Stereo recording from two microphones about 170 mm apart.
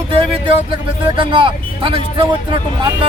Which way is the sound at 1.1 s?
30° right (ahead or behind).